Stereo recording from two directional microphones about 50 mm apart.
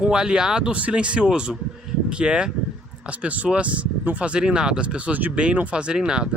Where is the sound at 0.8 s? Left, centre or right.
Right.